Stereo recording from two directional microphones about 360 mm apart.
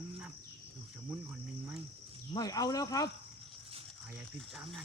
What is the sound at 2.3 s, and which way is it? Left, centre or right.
Cricket, centre.